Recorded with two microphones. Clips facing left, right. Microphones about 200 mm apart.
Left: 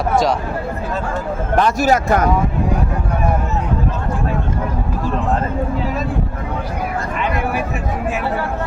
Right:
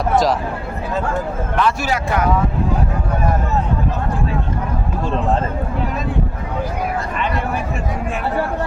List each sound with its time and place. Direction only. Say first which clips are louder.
1.5 s speech: left 5 dB; 45° left (ahead or behind)